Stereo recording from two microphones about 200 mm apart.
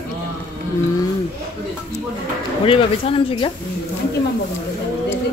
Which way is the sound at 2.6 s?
25° left (ahead or behind).